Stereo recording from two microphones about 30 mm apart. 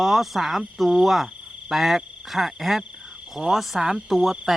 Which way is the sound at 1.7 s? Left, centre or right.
Centre.